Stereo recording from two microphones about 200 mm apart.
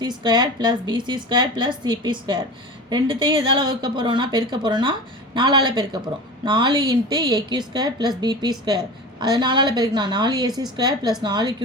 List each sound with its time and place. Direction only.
0.0 s speech: 20° right (ahead or behind)